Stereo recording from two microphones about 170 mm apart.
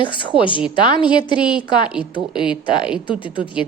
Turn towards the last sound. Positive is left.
turn(degrees=30)  # may be behind; listen again after turning